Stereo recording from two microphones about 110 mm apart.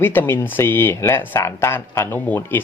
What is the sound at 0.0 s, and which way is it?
Speech, 20° left (ahead or behind).